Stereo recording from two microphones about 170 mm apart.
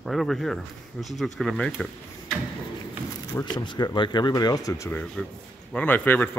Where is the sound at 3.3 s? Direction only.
20° left (ahead or behind).